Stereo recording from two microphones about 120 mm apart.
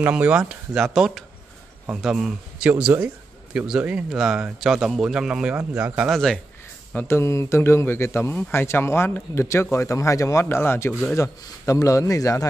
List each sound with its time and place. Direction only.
0.0 s a man's voice: 10° right (ahead or behind)
6.0 s a man's voice: 5° left (ahead or behind)
7.1 s a man's voice: 25° left (ahead or behind)